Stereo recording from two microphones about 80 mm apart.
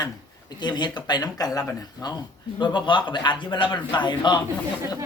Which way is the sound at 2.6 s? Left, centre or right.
Left.